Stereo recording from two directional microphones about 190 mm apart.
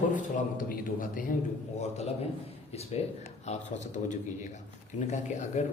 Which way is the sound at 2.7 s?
35° left (ahead or behind).